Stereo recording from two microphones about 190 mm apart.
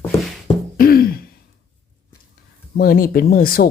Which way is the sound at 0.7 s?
50° left (ahead or behind).